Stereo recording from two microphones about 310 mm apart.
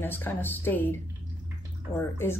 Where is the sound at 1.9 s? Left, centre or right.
Left.